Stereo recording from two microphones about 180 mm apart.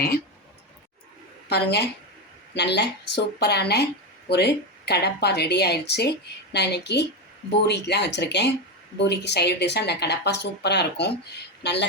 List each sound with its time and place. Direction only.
1.5 s speech: 65° left (ahead or behind)